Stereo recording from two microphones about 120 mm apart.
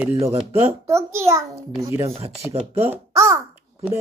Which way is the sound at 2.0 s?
55° right (ahead or behind).